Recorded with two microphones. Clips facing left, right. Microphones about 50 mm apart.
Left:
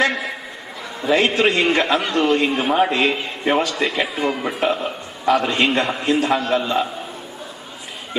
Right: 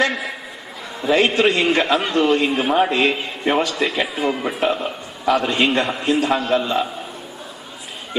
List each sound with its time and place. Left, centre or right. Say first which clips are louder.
0.0 s a man's voice: left 1 dB; centre